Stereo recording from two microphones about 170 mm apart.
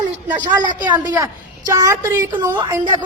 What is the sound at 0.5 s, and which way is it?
A woman's voice, 25° right (ahead or behind).